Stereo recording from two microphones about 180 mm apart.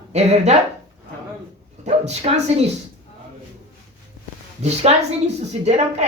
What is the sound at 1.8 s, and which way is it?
Speech, 35° right (ahead or behind).